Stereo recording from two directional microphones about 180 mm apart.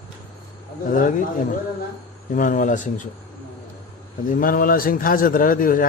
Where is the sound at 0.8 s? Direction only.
50° left (ahead or behind).